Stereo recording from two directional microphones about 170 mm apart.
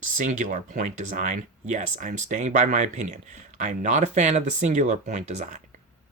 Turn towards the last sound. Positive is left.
turn(degrees=-45)  # may be behind; listen again after turning